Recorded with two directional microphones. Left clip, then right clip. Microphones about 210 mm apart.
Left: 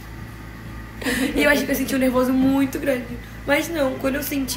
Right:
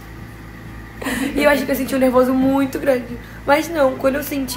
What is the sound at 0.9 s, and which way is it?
A woman's voice, 5° left (ahead or behind).